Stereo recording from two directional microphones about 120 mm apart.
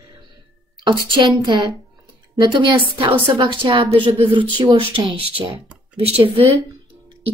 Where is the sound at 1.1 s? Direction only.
40° right (ahead or behind).